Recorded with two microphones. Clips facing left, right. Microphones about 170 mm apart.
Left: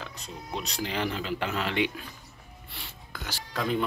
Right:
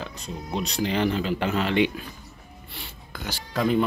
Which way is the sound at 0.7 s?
5° left (ahead or behind).